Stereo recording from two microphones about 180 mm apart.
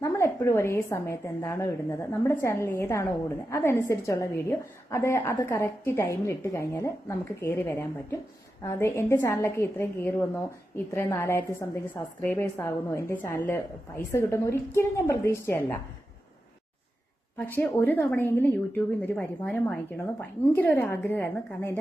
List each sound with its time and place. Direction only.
0.0 s a woman's voice: 15° left (ahead or behind)
17.3 s a woman's voice: 10° left (ahead or behind)